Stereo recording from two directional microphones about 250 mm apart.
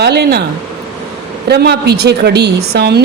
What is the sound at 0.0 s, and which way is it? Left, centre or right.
Speech, right.